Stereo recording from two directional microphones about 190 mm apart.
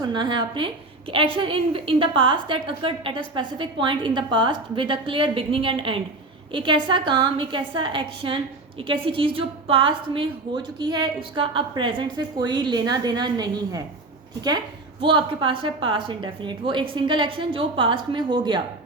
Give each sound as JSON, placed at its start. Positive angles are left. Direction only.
{"t": 0.0, "sound": "a woman's voice", "side_deg": -25}
{"t": 15.0, "sound": "a woman's voice", "side_deg": -25}